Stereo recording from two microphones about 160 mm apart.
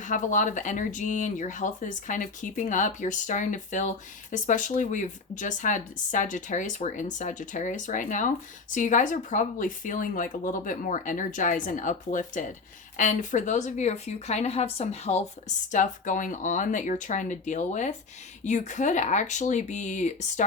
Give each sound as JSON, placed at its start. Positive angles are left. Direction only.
{"t": 0.0, "sound": "speech", "side_deg": 50}